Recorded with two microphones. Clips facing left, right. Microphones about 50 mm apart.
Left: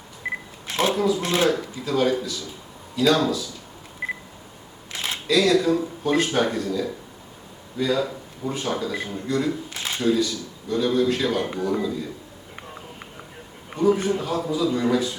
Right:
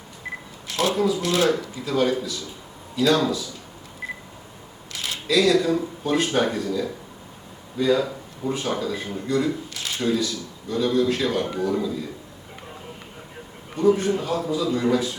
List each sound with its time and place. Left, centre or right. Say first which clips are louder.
0.2 s camera: left 5 dB; left
0.7 s speech: left 1 dB; left
0.9 s a man's voice: even; centre
1.2 s speech: right 1 dB; left
1.5 s a man's voice: even; centre
4.0 s telephone dialing: left 4 dB; left
4.9 s camera: left 2 dB; left
5.3 s a man's voice: even; centre
9.7 s a sound: left 1 dB; left
10.0 s a man's voice: left 2 dB; centre
13.7 s a man's voice: right 1 dB; centre